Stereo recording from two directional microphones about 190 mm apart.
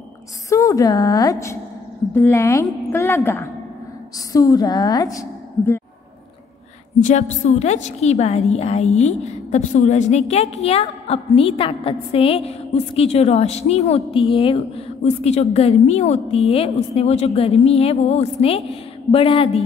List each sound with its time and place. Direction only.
0.5 s a woman's voice: 15° left (ahead or behind)
7.0 s a woman's voice: 40° left (ahead or behind)